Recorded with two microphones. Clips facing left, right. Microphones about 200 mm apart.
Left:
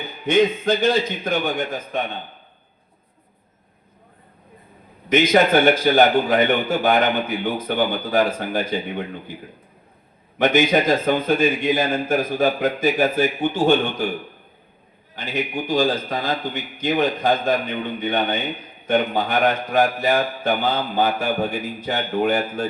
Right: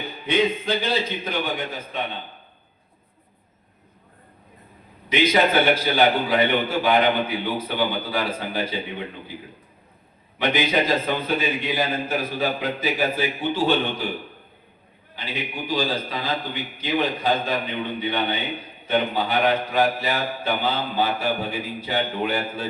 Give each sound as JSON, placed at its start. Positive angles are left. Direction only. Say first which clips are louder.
{"t": 0.3, "sound": "a man's voice", "louder": "left 5 dB", "side_deg": 45}
{"t": 5.0, "sound": "a man's voice", "louder": "left 3 dB", "side_deg": 45}
{"t": 10.3, "sound": "a man's voice", "louder": "left 5 dB", "side_deg": 45}
{"t": 15.1, "sound": "a man's voice", "louder": "left 6 dB", "side_deg": 45}